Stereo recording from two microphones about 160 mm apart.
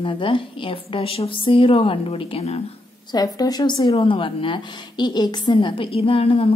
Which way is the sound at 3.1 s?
25° left (ahead or behind).